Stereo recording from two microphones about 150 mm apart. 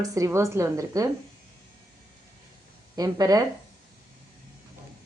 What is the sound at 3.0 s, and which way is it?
Speech, 25° right (ahead or behind).